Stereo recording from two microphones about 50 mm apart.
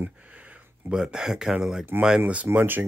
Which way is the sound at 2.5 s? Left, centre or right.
Right.